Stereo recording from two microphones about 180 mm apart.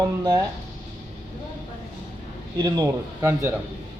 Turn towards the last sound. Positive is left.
turn(degrees=-15)  # may be behind; listen again after turning